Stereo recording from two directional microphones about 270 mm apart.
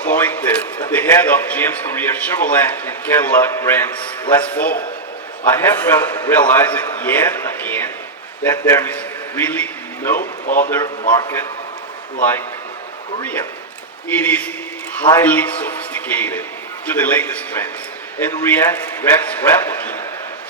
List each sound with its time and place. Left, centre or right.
0.0 s a sound: centre
0.9 s a man's voice: centre
10.2 s speech: left
10.7 s a man's voice: centre
13.1 s a man's voice: centre